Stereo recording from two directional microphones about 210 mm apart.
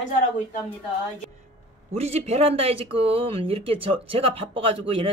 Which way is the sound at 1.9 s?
30° right (ahead or behind).